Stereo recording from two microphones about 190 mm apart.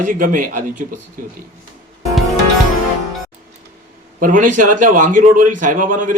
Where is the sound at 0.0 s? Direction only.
45° right (ahead or behind).